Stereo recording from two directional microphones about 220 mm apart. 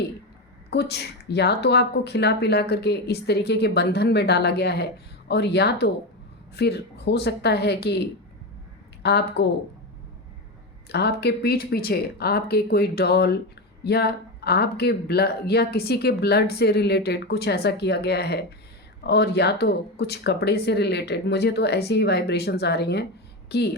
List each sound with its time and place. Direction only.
0.7 s speech: 50° left (ahead or behind)
9.0 s speech: 50° left (ahead or behind)
10.8 s speech: 50° left (ahead or behind)